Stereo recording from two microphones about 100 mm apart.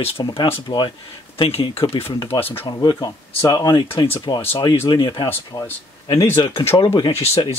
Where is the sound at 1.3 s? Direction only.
70° left (ahead or behind).